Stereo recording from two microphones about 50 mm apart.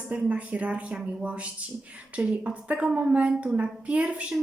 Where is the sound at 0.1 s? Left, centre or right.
Right.